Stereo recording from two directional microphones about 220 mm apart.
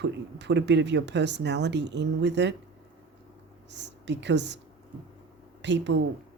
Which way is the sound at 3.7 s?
50° right (ahead or behind).